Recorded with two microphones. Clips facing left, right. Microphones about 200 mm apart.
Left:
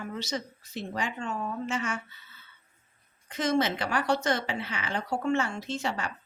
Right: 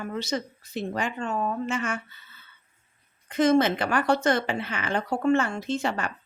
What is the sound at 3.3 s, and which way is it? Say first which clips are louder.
A woman's voice: right 6 dB; 50° right (ahead or behind).